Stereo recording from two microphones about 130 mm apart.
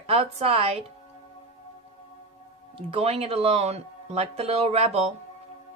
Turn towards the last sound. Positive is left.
turn(degrees=-50)  # may be behind; listen again after turning